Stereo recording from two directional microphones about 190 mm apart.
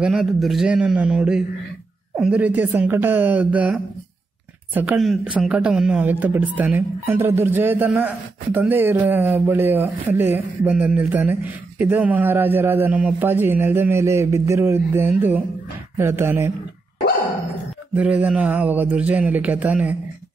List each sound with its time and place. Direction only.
0.0 s a man's voice: centre (ahead or behind)
17.9 s a man's voice: 10° right (ahead or behind)